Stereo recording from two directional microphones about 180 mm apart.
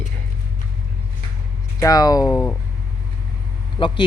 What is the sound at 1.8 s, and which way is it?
Speech, 20° left (ahead or behind).